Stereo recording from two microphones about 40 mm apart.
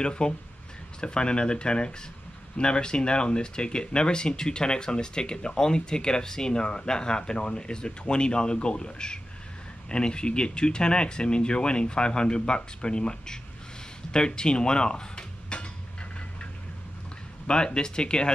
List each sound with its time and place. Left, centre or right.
0.0 s speech: left
14.1 s dishes: left
17.5 s speech: left